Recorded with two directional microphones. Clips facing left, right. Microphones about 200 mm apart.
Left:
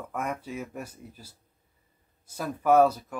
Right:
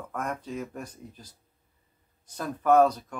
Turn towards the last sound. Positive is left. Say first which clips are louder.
# even
turn(degrees=5)  # may be behind; listen again after turning